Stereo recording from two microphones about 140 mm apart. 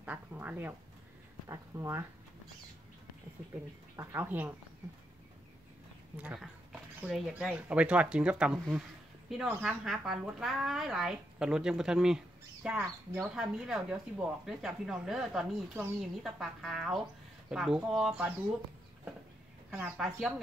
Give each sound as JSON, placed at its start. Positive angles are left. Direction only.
{"t": 0.0, "sound": "a sound", "side_deg": -10}
{"t": 1.5, "sound": "speech", "side_deg": -20}
{"t": 3.9, "sound": "speech", "side_deg": -20}
{"t": 6.2, "sound": "speech", "side_deg": -5}
{"t": 12.6, "sound": "speech", "side_deg": -15}
{"t": 13.2, "sound": "speech", "side_deg": -5}
{"t": 20.0, "sound": "speech", "side_deg": 0}